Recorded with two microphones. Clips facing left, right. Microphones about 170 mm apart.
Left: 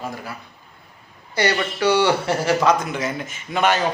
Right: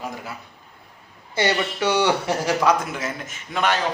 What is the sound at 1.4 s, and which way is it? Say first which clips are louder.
A man's voice: left 1 dB; 20° right (ahead or behind).